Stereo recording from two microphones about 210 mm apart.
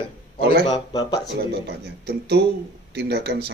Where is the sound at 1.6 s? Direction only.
55° right (ahead or behind).